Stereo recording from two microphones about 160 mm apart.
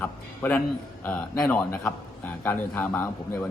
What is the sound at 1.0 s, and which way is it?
A man's voice, 10° left (ahead or behind).